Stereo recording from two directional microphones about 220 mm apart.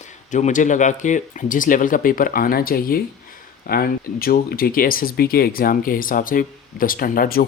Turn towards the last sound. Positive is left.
turn(degrees=45)  # may be behind; listen again after turning